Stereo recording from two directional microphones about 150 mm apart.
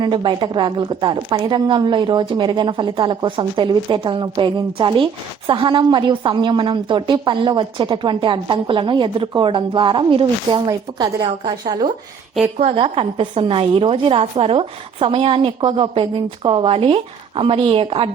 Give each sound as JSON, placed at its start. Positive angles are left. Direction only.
{"t": 0.0, "sound": "a woman's voice", "side_deg": -30}
{"t": 12.5, "sound": "a woman's voice", "side_deg": -40}